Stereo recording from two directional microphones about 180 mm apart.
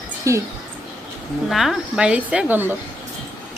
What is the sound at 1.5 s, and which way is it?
A woman's voice, centre (ahead or behind).